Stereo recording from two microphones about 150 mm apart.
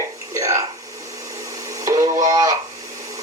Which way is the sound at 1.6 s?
20° right (ahead or behind).